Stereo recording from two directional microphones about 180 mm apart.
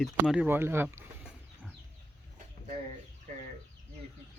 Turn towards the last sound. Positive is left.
turn(degrees=-45)  # may be behind; listen again after turning